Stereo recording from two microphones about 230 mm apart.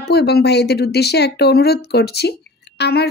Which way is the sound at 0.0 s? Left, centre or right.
Left.